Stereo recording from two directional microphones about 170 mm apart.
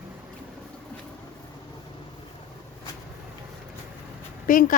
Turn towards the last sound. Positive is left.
turn(degrees=50)  # may be behind; listen again after turning